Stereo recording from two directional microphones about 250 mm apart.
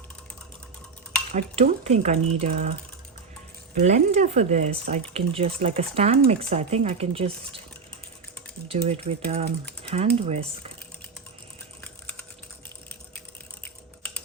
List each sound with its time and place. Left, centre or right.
1.3 s speech: right
3.8 s speech: right
8.6 s speech: right